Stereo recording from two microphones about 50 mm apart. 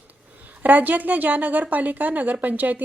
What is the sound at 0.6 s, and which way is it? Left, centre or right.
A woman's voice, right.